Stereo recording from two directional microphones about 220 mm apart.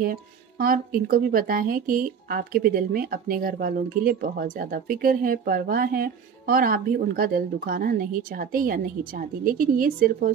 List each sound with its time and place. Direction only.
0.0 s speech: 40° right (ahead or behind)